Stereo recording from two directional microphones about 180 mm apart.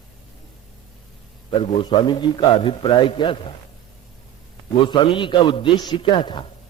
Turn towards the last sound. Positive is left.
turn(degrees=25)  # may be behind; listen again after turning